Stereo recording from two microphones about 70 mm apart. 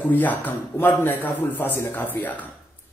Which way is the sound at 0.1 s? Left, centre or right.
Left.